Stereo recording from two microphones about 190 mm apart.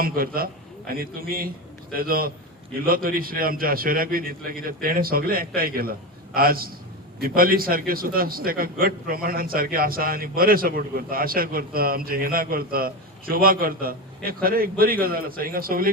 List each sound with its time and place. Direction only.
0.0 s a man's voice: 50° right (ahead or behind)